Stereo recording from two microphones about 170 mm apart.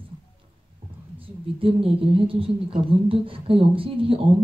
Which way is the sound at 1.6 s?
30° right (ahead or behind).